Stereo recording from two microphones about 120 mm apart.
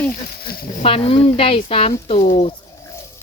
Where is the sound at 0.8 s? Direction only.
55° left (ahead or behind).